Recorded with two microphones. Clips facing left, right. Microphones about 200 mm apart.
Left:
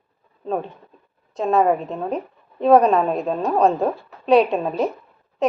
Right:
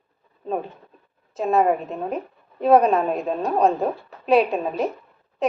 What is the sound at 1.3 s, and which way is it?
A woman's voice, 5° right (ahead or behind).